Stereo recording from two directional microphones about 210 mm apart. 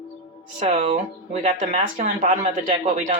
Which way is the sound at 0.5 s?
30° right (ahead or behind).